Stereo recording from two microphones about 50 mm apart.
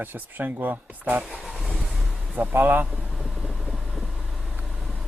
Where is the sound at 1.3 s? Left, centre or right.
Centre.